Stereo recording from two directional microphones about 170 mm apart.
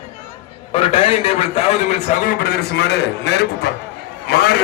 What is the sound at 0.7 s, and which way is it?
A man's voice, 30° left (ahead or behind).